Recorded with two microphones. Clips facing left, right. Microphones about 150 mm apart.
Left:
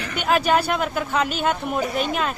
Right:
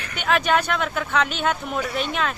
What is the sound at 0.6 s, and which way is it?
Speech, 5° left (ahead or behind).